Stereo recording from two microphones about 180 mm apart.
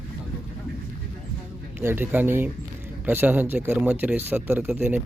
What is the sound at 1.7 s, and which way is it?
Speech, 10° right (ahead or behind).